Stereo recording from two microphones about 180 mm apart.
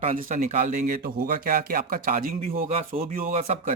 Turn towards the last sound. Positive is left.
turn(degrees=-40)  # may be behind; listen again after turning